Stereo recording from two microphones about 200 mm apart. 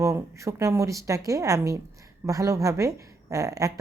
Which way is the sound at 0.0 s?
15° right (ahead or behind).